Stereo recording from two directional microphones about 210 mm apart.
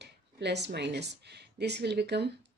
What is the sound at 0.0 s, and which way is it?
Speech, 55° right (ahead or behind).